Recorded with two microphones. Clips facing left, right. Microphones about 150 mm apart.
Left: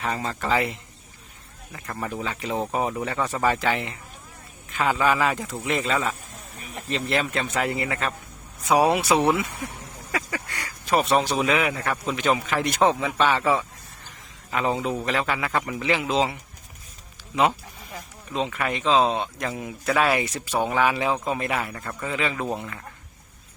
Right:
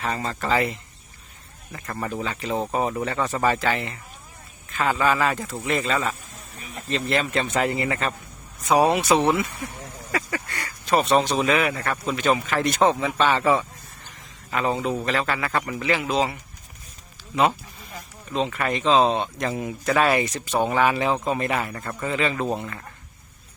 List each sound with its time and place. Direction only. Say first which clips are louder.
0.0 s speech: right 1 dB; 10° left (ahead or behind)
14.5 s speech: right 1 dB; 5° left (ahead or behind)
18.3 s speech: right 2 dB; 10° left (ahead or behind)